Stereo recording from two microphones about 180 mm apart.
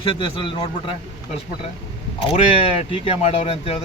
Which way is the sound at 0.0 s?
30° left (ahead or behind).